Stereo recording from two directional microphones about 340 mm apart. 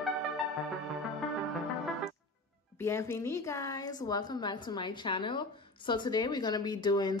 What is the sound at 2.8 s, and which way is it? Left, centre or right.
A woman's voice, centre.